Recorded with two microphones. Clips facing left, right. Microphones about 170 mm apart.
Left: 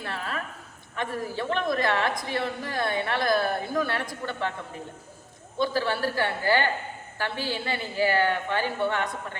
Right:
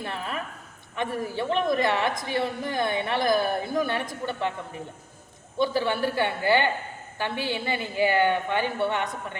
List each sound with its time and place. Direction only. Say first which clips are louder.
0.0 s a sound: right 1 dB; 20° right (ahead or behind)
0.9 s a woman's voice: right 2 dB; 20° right (ahead or behind)
5.5 s a woman's voice: right 2 dB; 20° right (ahead or behind)